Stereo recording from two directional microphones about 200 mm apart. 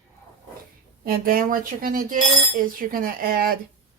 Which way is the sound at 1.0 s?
45° right (ahead or behind).